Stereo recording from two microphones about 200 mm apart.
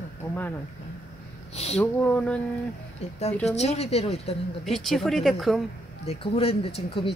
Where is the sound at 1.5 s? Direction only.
30° left (ahead or behind).